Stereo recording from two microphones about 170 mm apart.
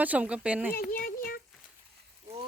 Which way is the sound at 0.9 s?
55° left (ahead or behind).